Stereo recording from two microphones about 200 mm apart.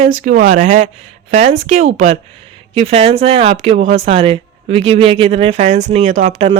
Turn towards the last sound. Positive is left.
turn(degrees=-35)  # may be behind; listen again after turning